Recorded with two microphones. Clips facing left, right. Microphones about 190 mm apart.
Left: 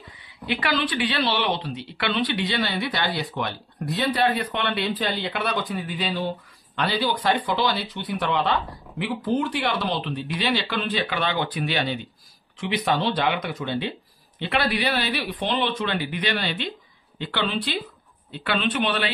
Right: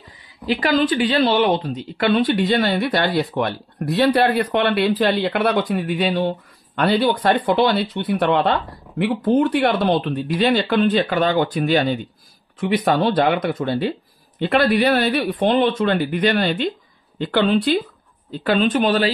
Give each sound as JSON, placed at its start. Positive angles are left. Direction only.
{"t": 0.5, "sound": "a woman's voice", "side_deg": -40}